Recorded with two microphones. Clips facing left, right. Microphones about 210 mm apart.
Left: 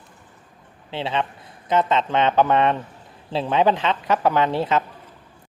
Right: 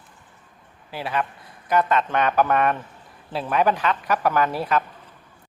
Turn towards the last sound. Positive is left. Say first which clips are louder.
# left 2 dB
turn(degrees=25)  # may be behind; listen again after turning